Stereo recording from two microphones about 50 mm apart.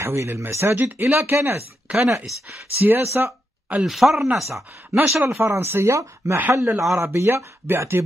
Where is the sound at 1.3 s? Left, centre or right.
Right.